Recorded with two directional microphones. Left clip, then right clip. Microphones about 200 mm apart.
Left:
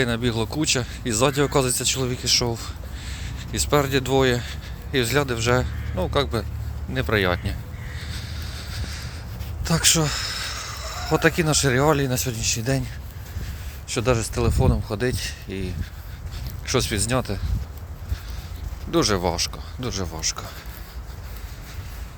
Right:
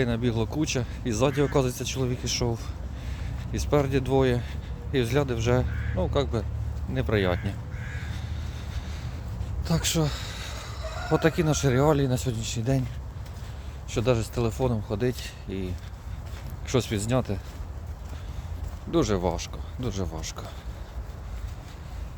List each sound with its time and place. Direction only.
0.0 s speech: centre (ahead or behind)
8.1 s vehicle: 5° right (ahead or behind)
9.6 s speech: 5° left (ahead or behind)
13.8 s speech: centre (ahead or behind)
18.9 s speech: 5° right (ahead or behind)